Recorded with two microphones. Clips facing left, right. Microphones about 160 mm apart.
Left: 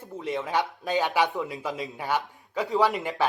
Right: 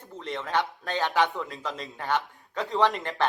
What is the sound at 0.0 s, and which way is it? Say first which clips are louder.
A man's voice: left 4 dB; 10° left (ahead or behind).